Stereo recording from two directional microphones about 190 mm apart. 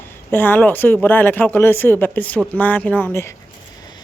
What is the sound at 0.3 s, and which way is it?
Speech, 10° left (ahead or behind).